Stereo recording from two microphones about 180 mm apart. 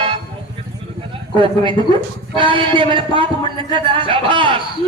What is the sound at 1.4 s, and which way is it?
A man's voice, 25° right (ahead or behind).